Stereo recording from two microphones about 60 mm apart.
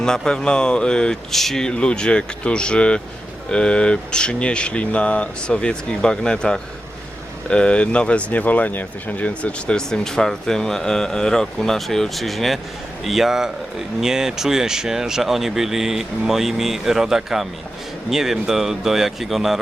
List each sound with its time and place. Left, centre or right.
0.0 s speech: centre